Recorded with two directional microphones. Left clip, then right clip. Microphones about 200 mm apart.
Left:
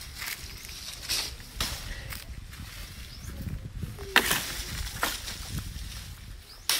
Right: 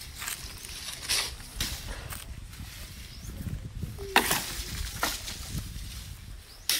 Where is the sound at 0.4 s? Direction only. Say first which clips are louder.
Right 1 dB; 40° right (ahead or behind).